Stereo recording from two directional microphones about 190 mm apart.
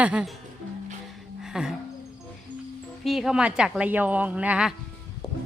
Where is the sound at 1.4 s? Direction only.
5° right (ahead or behind).